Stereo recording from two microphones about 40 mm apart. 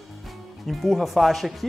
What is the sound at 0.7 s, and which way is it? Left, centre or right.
Speech, centre.